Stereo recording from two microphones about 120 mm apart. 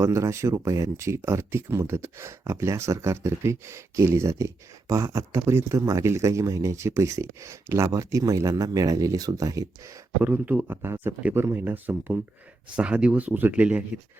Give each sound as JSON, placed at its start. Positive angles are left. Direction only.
{"t": 0.0, "sound": "speech", "side_deg": -25}
{"t": 10.2, "sound": "a man's voice", "side_deg": -15}